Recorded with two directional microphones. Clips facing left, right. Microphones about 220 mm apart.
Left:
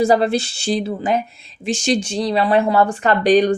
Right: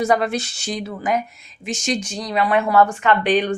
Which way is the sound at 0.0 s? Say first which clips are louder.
Left 4 dB; 30° left (ahead or behind).